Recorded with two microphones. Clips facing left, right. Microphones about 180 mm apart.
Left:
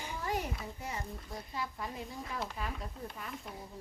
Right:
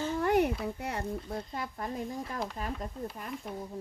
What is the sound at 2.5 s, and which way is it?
Speech, 40° right (ahead or behind).